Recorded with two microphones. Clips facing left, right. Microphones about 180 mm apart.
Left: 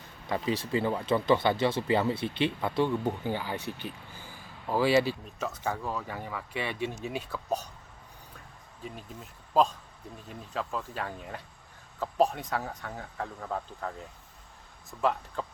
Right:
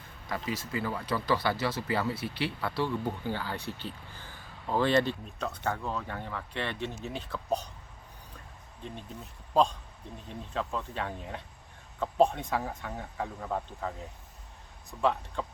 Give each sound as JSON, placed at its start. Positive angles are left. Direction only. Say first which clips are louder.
{"t": 0.3, "sound": "speech", "louder": "left 5 dB", "side_deg": 25}
{"t": 10.2, "sound": "speech", "louder": "right 1 dB", "side_deg": 0}